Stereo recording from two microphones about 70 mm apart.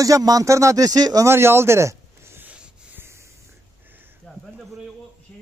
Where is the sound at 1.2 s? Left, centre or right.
Right.